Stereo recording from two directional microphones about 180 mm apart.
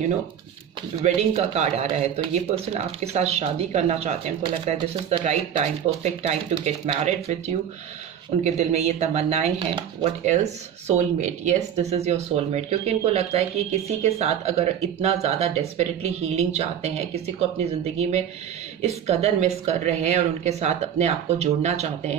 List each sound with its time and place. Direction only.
1.0 s speech: 40° right (ahead or behind)
18.8 s speech: 35° right (ahead or behind)